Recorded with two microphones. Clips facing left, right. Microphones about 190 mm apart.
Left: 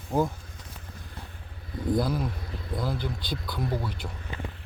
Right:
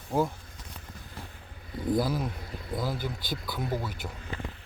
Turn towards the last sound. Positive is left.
turn(degrees=-5)  # may be behind; listen again after turning